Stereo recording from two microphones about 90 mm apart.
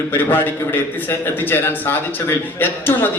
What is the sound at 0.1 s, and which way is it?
Speech, 25° left (ahead or behind).